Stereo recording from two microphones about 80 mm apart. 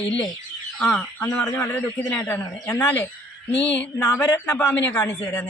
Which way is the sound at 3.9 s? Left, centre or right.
Left.